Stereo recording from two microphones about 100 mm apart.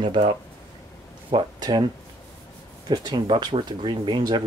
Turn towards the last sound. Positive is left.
turn(degrees=-50)  # may be behind; listen again after turning